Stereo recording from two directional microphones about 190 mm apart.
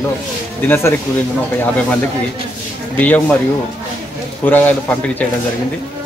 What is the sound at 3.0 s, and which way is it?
Speech, 5° left (ahead or behind).